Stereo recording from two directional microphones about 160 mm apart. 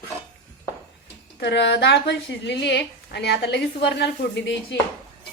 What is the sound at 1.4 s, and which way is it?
A woman's voice, 90° left.